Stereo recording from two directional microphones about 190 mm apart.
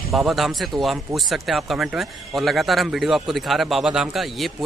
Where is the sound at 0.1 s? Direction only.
Centre (ahead or behind).